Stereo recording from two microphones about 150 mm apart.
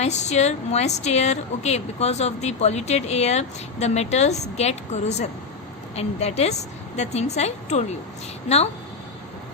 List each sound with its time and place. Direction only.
0.0 s a woman's voice: 50° left (ahead or behind)